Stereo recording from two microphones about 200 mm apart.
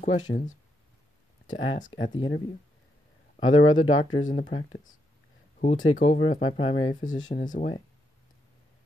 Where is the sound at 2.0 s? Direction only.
25° left (ahead or behind).